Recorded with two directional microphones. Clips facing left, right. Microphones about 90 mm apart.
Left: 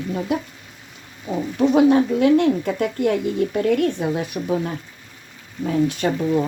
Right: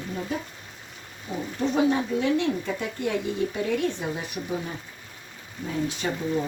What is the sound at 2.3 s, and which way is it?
Speech, 55° left (ahead or behind).